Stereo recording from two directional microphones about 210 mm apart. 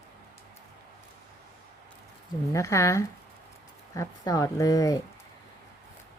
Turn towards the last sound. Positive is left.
turn(degrees=15)  # may be behind; listen again after turning